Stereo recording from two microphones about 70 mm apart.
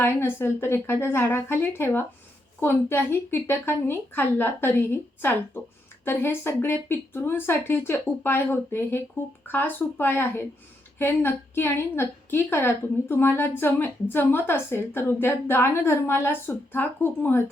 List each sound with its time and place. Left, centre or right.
0.0 s a woman's voice: left